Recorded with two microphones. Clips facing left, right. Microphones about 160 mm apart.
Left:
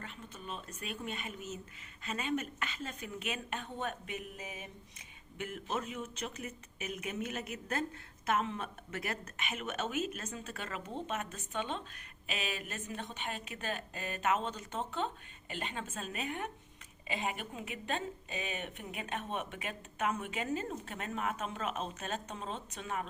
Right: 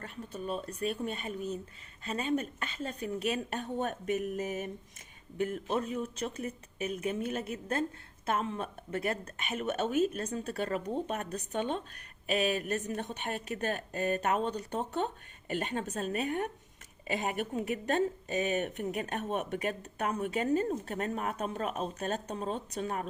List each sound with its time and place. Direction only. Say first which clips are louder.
0.0 s a woman's voice: right 8 dB; 40° right (ahead or behind)
5.7 s a woman's voice: right 6 dB; 35° right (ahead or behind)